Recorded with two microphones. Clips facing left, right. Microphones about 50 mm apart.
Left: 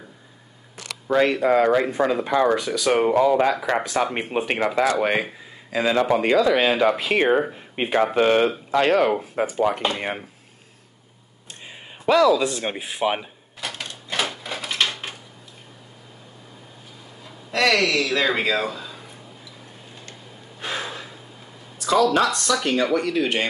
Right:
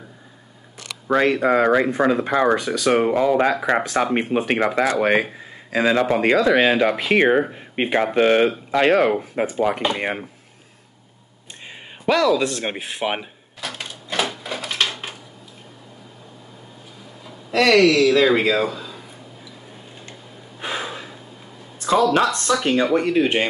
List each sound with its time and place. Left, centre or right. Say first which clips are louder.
1.0 s speech: right 1 dB; right
12.1 s speech: left 1 dB; centre
12.6 s speech: left 1 dB; centre
13.6 s a sound: right 1 dB; centre
17.5 s speech: right 5 dB; centre
20.6 s gasp: right 2 dB; centre
21.7 s speech: right 1 dB; right